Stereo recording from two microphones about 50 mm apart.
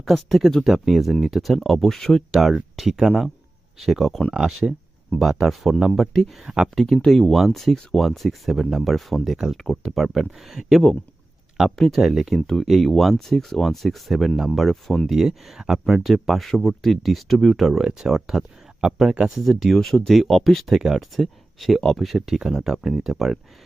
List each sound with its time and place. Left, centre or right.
0.0 s speech: centre
2.3 s speech: centre
4.4 s speech: right
5.2 s speech: centre
6.4 s speech: centre
6.7 s speech: centre
15.1 s speech: centre
22.4 s speech: centre